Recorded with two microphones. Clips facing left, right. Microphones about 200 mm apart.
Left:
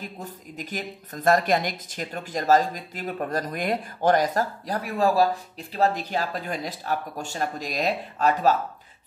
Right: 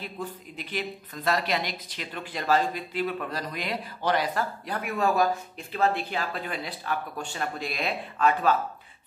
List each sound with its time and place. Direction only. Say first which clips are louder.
0.0 s a woman's voice: right 1 dB; 45° left (ahead or behind)